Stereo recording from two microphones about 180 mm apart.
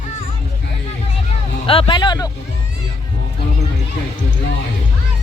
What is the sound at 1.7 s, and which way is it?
Speech, 30° left (ahead or behind).